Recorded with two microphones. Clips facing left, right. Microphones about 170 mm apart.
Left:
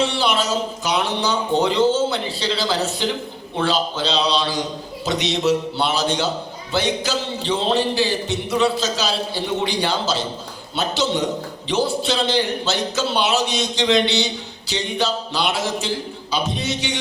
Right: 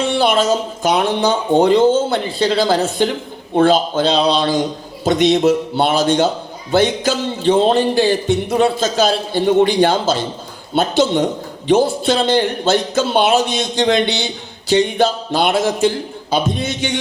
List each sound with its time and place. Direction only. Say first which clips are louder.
0.0 s a man's voice: right 5 dB; 50° right (ahead or behind)